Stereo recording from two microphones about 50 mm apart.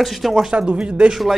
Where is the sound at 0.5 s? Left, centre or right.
Right.